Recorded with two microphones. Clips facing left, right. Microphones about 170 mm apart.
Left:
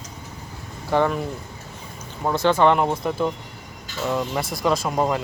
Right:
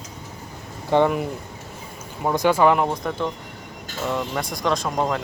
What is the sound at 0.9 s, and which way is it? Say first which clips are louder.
Speech: right 2 dB; 15° right (ahead or behind).